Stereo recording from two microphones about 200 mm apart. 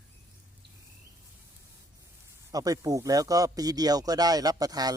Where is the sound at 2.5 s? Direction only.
15° right (ahead or behind).